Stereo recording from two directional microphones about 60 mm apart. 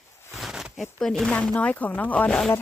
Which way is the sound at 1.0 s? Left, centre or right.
Centre.